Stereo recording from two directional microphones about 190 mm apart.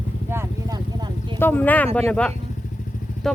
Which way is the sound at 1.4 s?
10° left (ahead or behind).